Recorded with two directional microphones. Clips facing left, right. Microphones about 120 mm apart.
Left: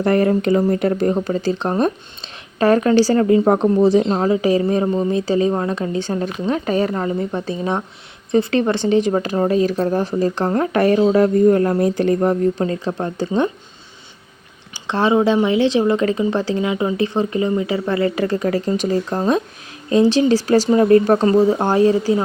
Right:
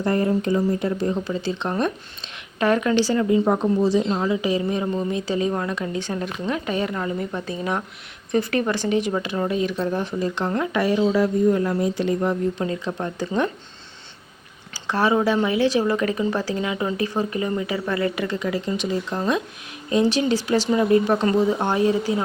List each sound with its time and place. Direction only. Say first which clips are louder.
0.0 s speech: left 5 dB; 75° left (ahead or behind)
1.1 s speech: left 6 dB; 45° left (ahead or behind)
3.2 s speech: left 5 dB; 60° left (ahead or behind); by 13.5 s 30° left (ahead or behind)
14.7 s speech: left 4 dB; 25° left (ahead or behind)
20.8 s speech: left 6 dB; 50° left (ahead or behind)
21.2 s speech: left 5 dB; 35° left (ahead or behind)